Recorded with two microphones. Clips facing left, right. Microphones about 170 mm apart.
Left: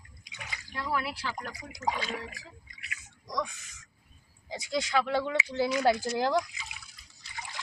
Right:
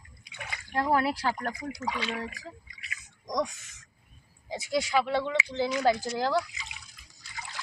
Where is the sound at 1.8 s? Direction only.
40° left (ahead or behind).